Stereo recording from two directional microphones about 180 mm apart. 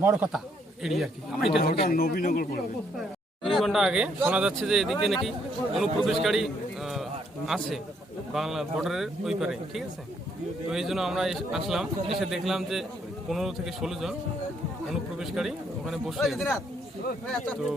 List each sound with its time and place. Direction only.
0.0 s a man's voice: 10° right (ahead or behind)
0.3 s speech: centre (ahead or behind)
1.6 s a man's voice: 55° left (ahead or behind)
3.4 s a man's voice: centre (ahead or behind)